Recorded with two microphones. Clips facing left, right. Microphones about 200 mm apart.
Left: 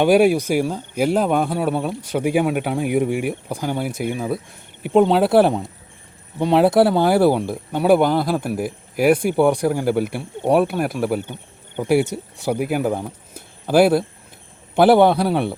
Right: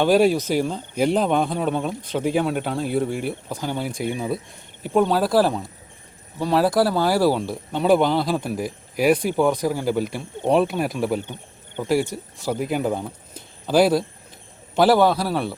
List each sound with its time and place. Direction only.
0.0 s speech: 10° left (ahead or behind)
4.8 s speech: 20° left (ahead or behind)
14.9 s speech: 20° left (ahead or behind)